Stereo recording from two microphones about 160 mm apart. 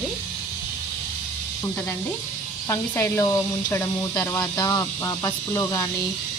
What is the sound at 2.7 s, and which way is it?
Speech, 15° left (ahead or behind).